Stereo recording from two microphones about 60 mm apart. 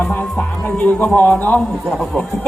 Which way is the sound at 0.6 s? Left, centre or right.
Left.